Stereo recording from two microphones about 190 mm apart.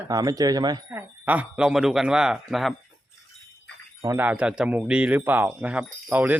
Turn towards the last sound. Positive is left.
turn(degrees=-10)  # may be behind; listen again after turning